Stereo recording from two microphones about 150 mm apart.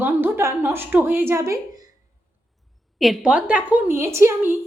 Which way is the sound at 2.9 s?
Centre (ahead or behind).